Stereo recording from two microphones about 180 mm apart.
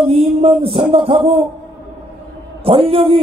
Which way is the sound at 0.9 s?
30° right (ahead or behind).